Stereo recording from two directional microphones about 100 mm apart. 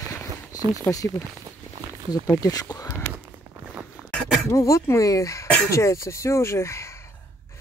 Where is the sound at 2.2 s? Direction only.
35° left (ahead or behind).